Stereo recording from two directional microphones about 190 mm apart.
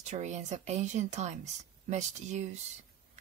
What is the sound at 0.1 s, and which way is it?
Speech, 40° right (ahead or behind).